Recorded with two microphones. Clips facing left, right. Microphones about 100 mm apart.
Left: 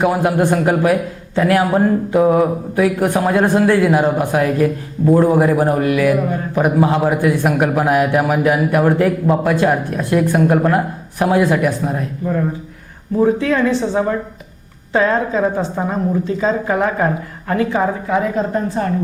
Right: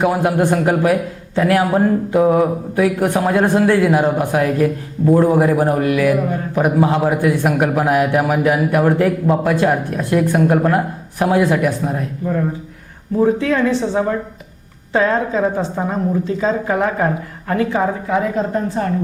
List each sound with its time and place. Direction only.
0.0 s a man's voice: 30° left (ahead or behind)